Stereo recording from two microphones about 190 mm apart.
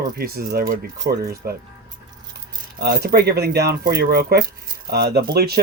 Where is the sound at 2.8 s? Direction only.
55° right (ahead or behind).